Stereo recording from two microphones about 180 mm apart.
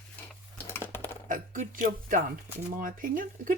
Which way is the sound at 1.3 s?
45° right (ahead or behind).